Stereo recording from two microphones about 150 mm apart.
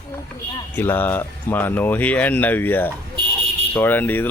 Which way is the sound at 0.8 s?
15° left (ahead or behind).